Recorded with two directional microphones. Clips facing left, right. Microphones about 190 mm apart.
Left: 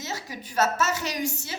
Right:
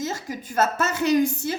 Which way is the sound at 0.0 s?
50° right (ahead or behind).